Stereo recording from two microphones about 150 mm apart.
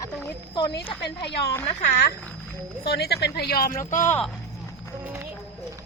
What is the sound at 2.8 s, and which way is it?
Speech, 90° left.